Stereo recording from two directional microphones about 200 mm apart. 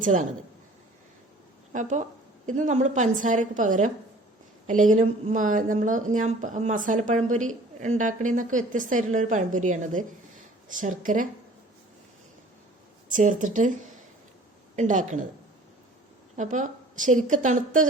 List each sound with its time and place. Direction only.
0.0 s a woman's voice: 40° right (ahead or behind)
1.7 s a woman's voice: 40° right (ahead or behind)
13.1 s a woman's voice: 40° right (ahead or behind)
14.8 s a woman's voice: 40° right (ahead or behind)
16.3 s a woman's voice: 35° right (ahead or behind)